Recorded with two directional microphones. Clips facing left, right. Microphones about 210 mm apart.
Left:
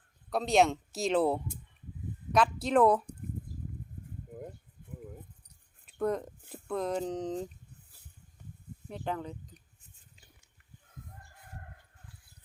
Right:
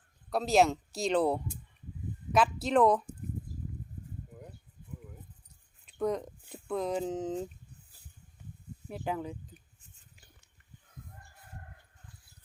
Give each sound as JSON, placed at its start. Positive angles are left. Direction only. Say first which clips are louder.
{"t": 0.3, "sound": "speech", "louder": "even", "side_deg": 0}
{"t": 5.8, "sound": "a sound", "louder": "even", "side_deg": 0}
{"t": 6.5, "sound": "speech", "louder": "even", "side_deg": 0}
{"t": 8.9, "sound": "speech", "louder": "right 1 dB", "side_deg": -5}